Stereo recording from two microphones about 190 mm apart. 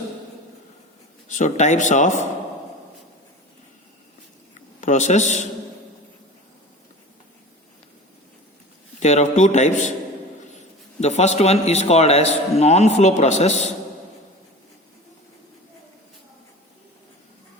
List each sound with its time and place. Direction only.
1.3 s speech: 40° left (ahead or behind)
4.8 s speech: 40° left (ahead or behind)
9.0 s speech: 35° left (ahead or behind)
11.0 s speech: 35° left (ahead or behind)